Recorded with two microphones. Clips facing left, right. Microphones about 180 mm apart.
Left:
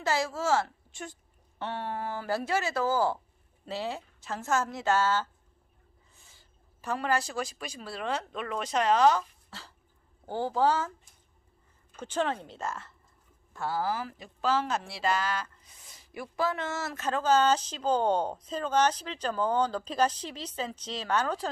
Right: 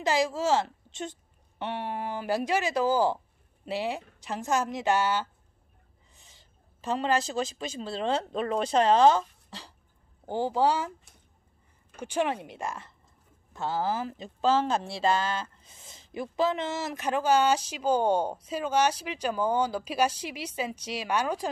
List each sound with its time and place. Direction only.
0.0 s a woman's voice: 15° right (ahead or behind)
10.2 s speech: 15° right (ahead or behind)
12.0 s speech: 10° right (ahead or behind)